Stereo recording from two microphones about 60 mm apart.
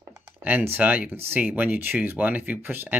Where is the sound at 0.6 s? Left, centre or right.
Right.